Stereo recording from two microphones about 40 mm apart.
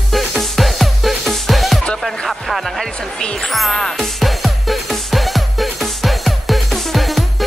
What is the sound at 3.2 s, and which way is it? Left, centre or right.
Speech, centre.